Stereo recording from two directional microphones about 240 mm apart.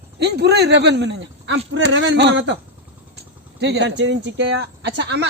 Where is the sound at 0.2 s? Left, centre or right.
Right.